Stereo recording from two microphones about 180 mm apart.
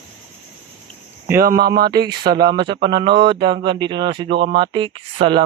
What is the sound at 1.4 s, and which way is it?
Speech, 55° right (ahead or behind).